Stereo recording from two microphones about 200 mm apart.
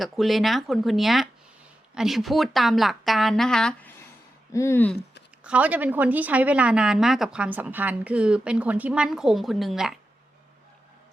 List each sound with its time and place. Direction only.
0.0 s speech: centre (ahead or behind)
4.5 s speech: 15° left (ahead or behind)
5.4 s speech: 5° right (ahead or behind)